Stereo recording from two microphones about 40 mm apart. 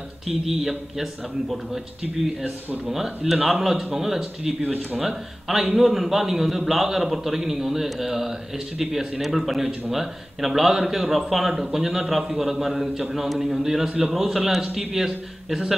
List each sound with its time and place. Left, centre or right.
0.3 s a man's voice: centre
3.3 s a man's voice: centre
13.8 s a man's voice: centre
14.1 s a man's voice: centre
14.6 s a man's voice: right